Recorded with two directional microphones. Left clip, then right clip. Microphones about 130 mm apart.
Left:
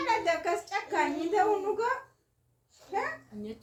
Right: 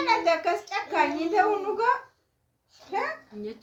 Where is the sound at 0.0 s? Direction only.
20° right (ahead or behind).